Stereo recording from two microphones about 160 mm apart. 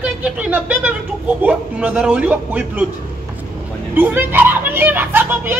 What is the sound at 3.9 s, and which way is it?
Speech, 10° right (ahead or behind).